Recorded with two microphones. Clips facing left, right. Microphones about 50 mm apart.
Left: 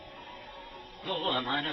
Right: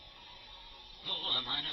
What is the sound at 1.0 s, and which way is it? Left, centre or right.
Speech, left.